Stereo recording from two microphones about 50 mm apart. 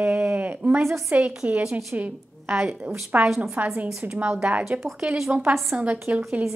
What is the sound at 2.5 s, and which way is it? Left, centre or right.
Speech, centre.